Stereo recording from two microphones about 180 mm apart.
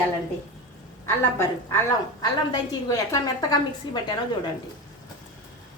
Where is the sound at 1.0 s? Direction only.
15° left (ahead or behind).